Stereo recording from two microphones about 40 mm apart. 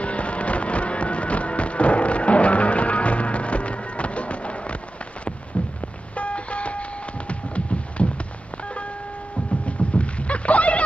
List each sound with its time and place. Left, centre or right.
0.0 s music: left
5.5 s vehicle: left
6.1 s music: left
8.6 s vehicle: left
9.6 s rowboat: left